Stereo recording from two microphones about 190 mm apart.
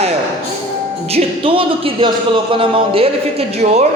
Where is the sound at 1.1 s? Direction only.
30° right (ahead or behind).